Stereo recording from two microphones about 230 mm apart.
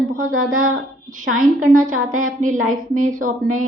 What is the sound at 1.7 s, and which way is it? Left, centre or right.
A woman's voice, right.